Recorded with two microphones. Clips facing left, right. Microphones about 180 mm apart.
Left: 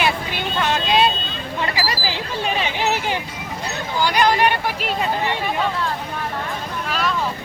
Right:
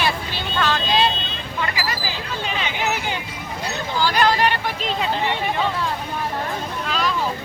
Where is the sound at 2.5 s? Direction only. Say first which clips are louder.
Left 1 dB; 30° left (ahead or behind).